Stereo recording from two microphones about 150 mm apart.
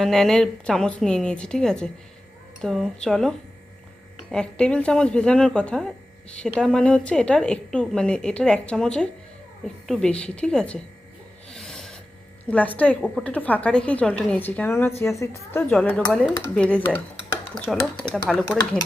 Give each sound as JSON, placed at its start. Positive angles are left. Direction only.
{"t": 0.0, "sound": "a woman's voice", "side_deg": 5}
{"t": 11.5, "sound": "filing", "side_deg": 5}
{"t": 12.5, "sound": "speech", "side_deg": 10}
{"t": 18.4, "sound": "speech", "side_deg": 25}